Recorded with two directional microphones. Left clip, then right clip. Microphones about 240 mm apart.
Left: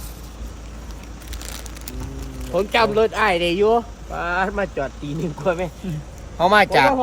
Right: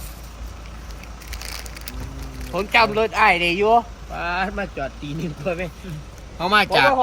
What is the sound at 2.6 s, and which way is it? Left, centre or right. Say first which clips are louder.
Speech: even; centre.